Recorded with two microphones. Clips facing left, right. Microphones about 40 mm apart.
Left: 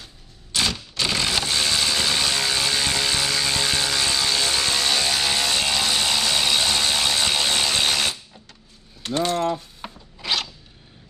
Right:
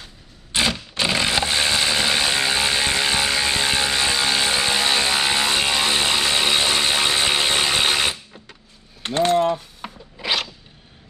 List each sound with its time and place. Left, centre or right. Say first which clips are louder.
0.5 s a sound: right 3 dB; right
9.0 s mechanisms: right 4 dB; right
9.8 s zipper: right 3 dB; centre